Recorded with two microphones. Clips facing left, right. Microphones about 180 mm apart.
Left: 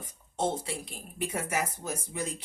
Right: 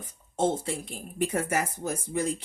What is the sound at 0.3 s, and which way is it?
Speech, 50° right (ahead or behind).